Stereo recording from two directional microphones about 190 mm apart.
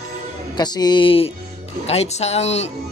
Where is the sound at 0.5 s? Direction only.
20° left (ahead or behind).